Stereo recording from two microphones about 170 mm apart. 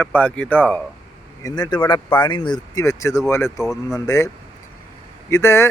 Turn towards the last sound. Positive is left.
turn(degrees=15)  # may be behind; listen again after turning